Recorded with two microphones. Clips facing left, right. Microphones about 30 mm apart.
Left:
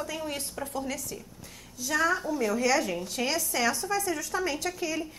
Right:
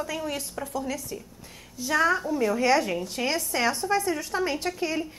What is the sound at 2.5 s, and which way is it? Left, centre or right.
Speech, right.